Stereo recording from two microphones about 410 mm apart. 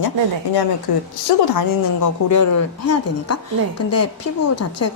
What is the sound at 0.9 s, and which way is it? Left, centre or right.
Speech, left.